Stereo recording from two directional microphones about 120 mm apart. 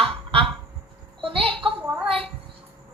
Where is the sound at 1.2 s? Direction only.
50° right (ahead or behind).